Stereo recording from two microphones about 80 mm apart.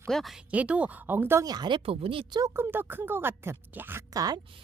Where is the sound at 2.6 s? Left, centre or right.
Right.